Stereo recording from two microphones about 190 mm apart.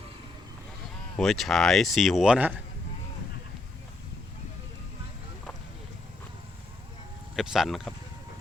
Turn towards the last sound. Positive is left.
turn(degrees=0)  # may be behind; listen again after turning